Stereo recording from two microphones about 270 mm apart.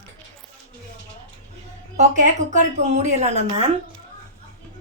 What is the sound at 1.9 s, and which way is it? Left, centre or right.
A woman's voice, right.